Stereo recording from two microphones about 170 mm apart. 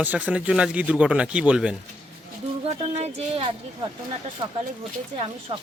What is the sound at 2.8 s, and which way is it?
Speech, 40° right (ahead or behind).